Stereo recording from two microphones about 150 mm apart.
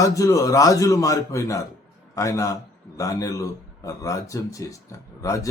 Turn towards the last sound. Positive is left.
turn(degrees=20)  # may be behind; listen again after turning